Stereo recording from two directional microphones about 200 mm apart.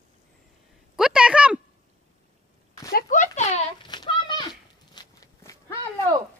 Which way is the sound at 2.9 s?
45° left (ahead or behind).